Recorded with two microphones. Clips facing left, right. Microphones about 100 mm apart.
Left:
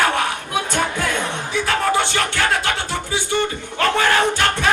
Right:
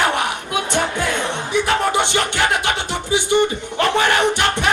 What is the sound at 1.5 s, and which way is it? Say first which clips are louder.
Music: right 1 dB; 20° right (ahead or behind).